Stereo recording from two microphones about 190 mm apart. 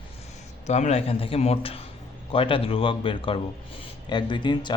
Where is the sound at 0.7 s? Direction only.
35° left (ahead or behind).